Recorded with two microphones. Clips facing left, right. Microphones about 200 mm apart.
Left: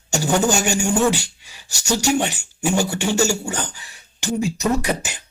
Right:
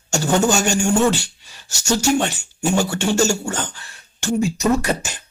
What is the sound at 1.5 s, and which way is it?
Speech, 15° left (ahead or behind).